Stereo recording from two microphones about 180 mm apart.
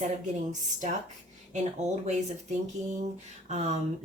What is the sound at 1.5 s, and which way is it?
Speech, 40° right (ahead or behind).